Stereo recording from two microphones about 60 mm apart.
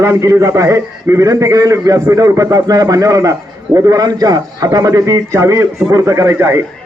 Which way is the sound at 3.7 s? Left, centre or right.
Right.